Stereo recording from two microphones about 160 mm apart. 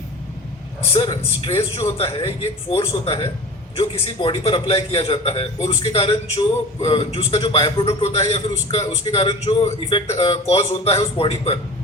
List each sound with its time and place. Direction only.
0.9 s a man's voice: 40° left (ahead or behind)